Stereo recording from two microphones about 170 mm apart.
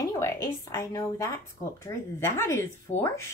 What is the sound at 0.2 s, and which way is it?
A woman's voice, 20° left (ahead or behind).